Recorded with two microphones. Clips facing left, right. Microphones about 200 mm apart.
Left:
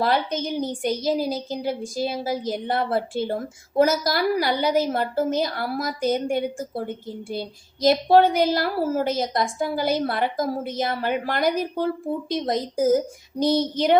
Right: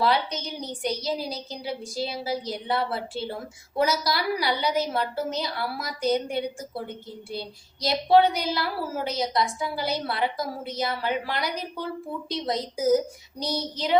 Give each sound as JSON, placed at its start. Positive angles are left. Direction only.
{"t": 0.0, "sound": "a woman's voice", "side_deg": 50}